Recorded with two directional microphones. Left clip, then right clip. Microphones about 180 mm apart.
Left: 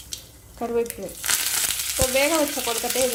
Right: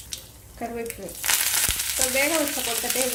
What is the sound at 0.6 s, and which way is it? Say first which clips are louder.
Speech: left 4 dB; 35° left (ahead or behind).